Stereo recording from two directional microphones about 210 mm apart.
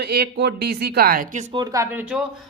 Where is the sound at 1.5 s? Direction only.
15° right (ahead or behind).